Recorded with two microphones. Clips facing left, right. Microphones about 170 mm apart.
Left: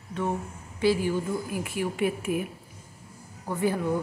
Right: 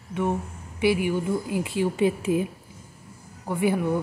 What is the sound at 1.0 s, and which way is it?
A woman's voice, 15° right (ahead or behind).